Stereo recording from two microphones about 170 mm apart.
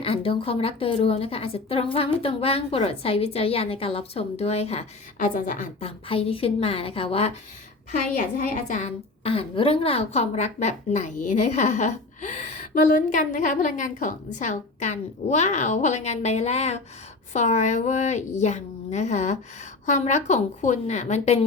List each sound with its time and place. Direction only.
0.0 s a woman's voice: 30° left (ahead or behind)
5.2 s a woman's voice: 55° left (ahead or behind)
5.8 s a woman's voice: 35° left (ahead or behind)
8.4 s a woman's voice: 45° left (ahead or behind)